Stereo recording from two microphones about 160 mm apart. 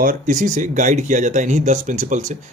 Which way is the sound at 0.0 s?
55° right (ahead or behind).